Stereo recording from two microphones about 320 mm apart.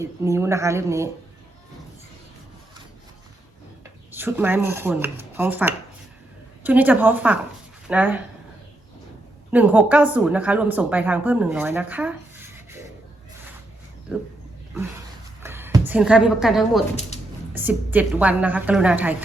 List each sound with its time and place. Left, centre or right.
0.0 s speech: centre
4.1 s a woman's voice: centre
9.5 s a woman's voice: centre
15.4 s music: centre
15.9 s a woman's voice: centre
17.1 s a sound: left
17.5 s a woman's voice: centre